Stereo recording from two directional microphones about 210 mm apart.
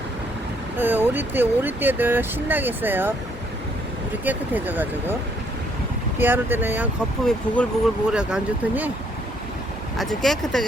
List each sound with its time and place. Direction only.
0.8 s speech: 10° right (ahead or behind)
4.3 s speech: 10° right (ahead or behind)
6.1 s speech: 10° right (ahead or behind)
7.3 s speech: 5° left (ahead or behind)
10.0 s speech: centre (ahead or behind)